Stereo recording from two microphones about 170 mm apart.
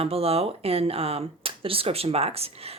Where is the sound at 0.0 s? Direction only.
35° right (ahead or behind).